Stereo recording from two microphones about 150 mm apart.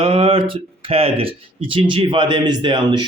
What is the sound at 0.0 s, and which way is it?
Speech, 35° right (ahead or behind).